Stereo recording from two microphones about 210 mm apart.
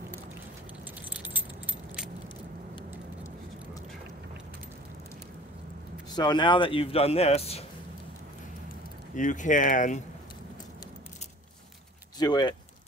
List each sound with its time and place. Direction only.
1.1 s keys jangling: 5° right (ahead or behind)
6.1 s speech: 20° left (ahead or behind)
9.1 s speech: 35° left (ahead or behind)
12.2 s speech: 20° left (ahead or behind)